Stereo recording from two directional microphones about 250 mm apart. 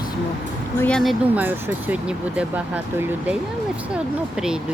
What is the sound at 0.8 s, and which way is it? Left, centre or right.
Speech, centre.